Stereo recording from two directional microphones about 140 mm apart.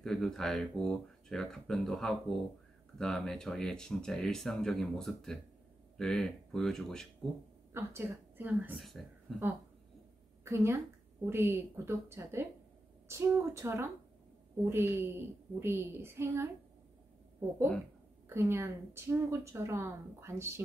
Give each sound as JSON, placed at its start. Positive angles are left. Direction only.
{"t": 0.0, "sound": "speech", "side_deg": 5}
{"t": 7.7, "sound": "a woman's voice", "side_deg": -20}
{"t": 8.7, "sound": "speech", "side_deg": 0}
{"t": 10.4, "sound": "a woman's voice", "side_deg": -20}
{"t": 18.3, "sound": "a woman's voice", "side_deg": -20}